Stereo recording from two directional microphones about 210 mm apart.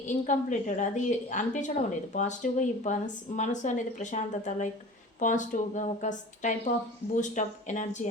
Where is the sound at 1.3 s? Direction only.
35° left (ahead or behind).